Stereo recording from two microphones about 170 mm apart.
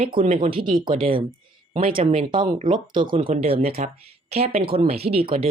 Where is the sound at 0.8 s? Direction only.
30° right (ahead or behind).